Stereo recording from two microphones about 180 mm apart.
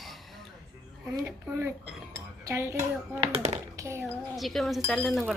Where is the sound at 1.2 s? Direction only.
15° right (ahead or behind).